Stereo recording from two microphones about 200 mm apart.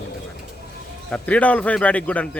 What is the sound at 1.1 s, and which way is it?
A man's voice, 5° left (ahead or behind).